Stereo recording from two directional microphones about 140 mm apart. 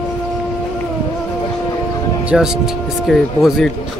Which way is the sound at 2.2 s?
5° right (ahead or behind).